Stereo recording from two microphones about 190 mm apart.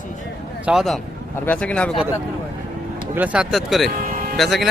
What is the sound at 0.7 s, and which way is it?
Speech, centre (ahead or behind).